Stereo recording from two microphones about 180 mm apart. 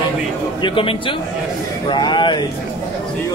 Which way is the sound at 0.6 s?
30° left (ahead or behind).